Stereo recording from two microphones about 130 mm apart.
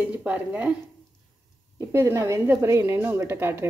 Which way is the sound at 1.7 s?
20° right (ahead or behind).